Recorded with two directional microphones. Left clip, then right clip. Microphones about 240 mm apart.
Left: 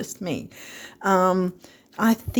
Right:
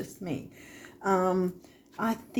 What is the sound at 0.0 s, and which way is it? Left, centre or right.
Speech, left.